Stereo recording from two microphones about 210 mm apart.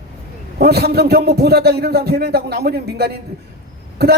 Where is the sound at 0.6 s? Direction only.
50° right (ahead or behind).